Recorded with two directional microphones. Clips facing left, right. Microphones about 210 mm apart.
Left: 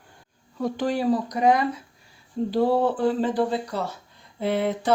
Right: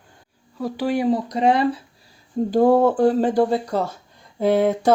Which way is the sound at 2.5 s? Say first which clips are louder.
Right 6 dB; 50° right (ahead or behind).